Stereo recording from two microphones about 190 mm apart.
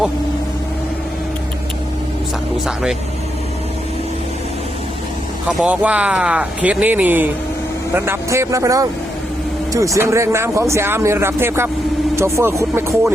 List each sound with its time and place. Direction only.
5.5 s speech: 5° right (ahead or behind)